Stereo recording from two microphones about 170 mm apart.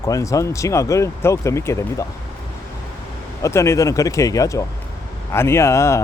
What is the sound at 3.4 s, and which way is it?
A man's voice, 15° left (ahead or behind).